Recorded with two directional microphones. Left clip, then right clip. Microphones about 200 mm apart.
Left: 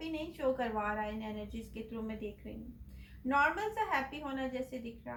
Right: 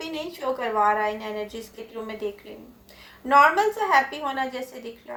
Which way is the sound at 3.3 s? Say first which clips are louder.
Right 14 dB; 35° right (ahead or behind).